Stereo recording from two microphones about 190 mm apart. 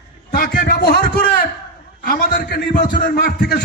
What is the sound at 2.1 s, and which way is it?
A man's voice, 55° left (ahead or behind).